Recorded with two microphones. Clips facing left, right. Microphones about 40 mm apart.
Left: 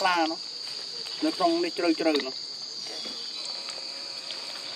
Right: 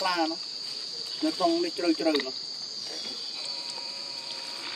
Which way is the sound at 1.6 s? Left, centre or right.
Left.